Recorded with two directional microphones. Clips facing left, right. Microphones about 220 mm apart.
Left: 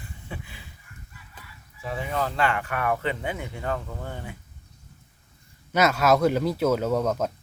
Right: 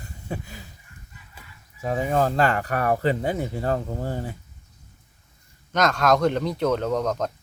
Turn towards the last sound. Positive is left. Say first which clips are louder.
# even
turn(degrees=5)  # may be behind; listen again after turning